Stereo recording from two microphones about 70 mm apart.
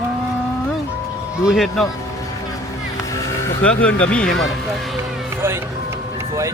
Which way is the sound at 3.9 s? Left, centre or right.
Centre.